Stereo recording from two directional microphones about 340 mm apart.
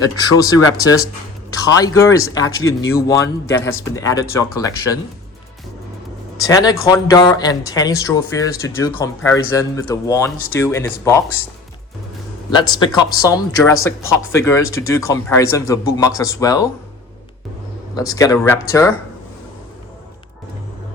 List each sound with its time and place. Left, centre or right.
0.0 s speech: centre
3.6 s speech: left
3.9 s speech: centre
6.3 s speech: centre
12.5 s speech: centre
17.9 s speech: centre